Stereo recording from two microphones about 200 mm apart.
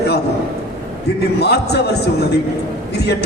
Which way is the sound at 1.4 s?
55° left (ahead or behind).